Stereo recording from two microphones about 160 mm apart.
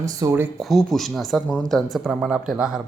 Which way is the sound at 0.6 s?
Centre (ahead or behind).